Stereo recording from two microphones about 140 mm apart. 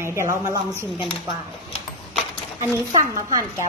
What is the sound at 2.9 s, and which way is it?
Speech, 20° right (ahead or behind).